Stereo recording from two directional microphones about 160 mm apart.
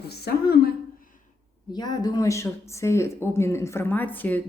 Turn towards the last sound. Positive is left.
turn(degrees=10)  # may be behind; listen again after turning